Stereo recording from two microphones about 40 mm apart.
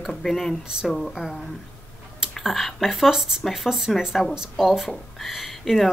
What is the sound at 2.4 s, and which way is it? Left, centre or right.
Speech, centre.